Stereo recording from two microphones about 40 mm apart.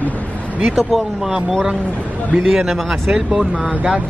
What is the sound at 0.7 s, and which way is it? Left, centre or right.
Speech, centre.